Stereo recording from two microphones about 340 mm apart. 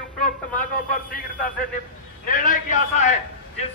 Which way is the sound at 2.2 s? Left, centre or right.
Left.